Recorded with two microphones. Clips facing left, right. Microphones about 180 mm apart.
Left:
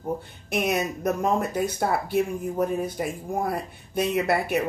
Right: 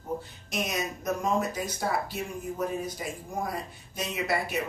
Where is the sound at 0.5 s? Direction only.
60° left (ahead or behind).